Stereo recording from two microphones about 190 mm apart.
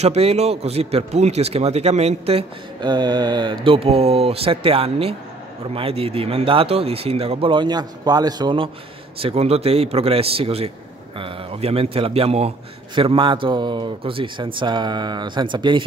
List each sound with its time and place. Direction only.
0.0 s a man's voice: 35° right (ahead or behind)